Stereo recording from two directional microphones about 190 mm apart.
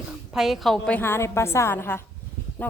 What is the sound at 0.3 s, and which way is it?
A woman's voice, centre (ahead or behind).